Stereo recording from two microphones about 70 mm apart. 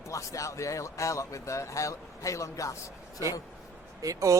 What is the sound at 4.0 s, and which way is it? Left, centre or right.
Speech, right.